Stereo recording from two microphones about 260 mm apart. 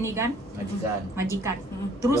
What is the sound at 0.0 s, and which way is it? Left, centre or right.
Speech, centre.